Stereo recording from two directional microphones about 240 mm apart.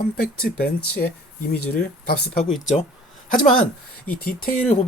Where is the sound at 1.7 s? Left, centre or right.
Left.